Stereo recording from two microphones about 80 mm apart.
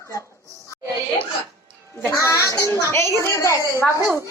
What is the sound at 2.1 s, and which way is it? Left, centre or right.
A woman's voice, left.